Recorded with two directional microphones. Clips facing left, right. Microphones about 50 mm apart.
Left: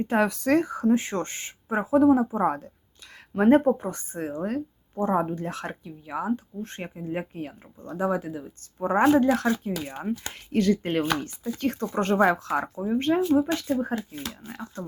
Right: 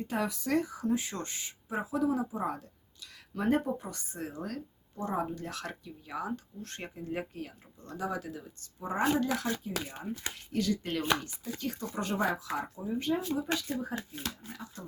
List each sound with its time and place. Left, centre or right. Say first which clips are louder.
0.0 s speech: left 10 dB; left
8.8 s speech: left 10 dB; left
12.7 s speech: left 9 dB; left
13.0 s speech: left 10 dB; left